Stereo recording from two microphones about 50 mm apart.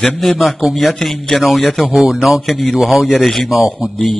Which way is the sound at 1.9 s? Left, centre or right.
Centre.